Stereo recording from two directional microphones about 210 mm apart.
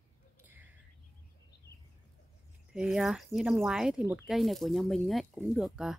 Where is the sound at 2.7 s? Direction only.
Centre (ahead or behind).